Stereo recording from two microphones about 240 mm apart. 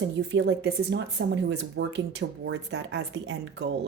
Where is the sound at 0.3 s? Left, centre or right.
Right.